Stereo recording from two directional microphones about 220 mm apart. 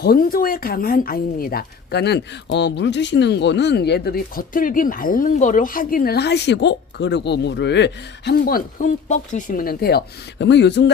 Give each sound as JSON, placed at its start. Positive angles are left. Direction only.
{"t": 0.0, "sound": "speech", "side_deg": 40}